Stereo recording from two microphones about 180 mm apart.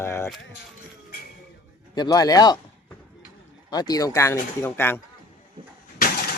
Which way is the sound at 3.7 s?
20° left (ahead or behind).